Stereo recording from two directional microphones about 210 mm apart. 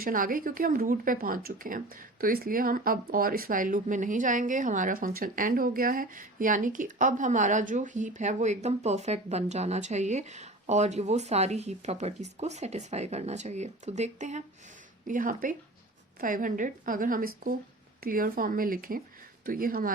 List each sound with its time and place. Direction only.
0.0 s speech: 40° right (ahead or behind)